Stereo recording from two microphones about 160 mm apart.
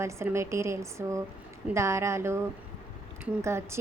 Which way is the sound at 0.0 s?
15° right (ahead or behind).